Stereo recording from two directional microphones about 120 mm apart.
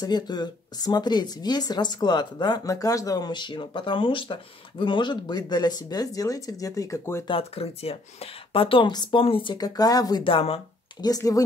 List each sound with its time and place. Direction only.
0.0 s speech: 35° left (ahead or behind)
7.2 s speech: 50° left (ahead or behind); by 10.2 s 30° left (ahead or behind)
10.2 s speech: 50° left (ahead or behind)
11.0 s speech: 30° left (ahead or behind)